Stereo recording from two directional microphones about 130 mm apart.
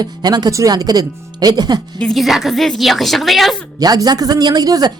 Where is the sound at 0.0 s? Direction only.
30° right (ahead or behind).